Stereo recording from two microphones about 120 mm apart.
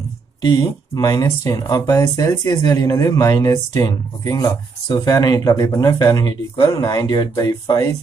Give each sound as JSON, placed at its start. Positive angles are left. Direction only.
{"t": 0.4, "sound": "speech", "side_deg": 35}